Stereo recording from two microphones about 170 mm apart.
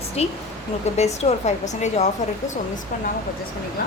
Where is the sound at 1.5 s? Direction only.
45° left (ahead or behind).